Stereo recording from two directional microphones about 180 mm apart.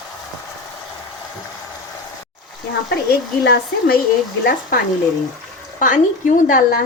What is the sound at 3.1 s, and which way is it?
A woman's voice, 60° left (ahead or behind).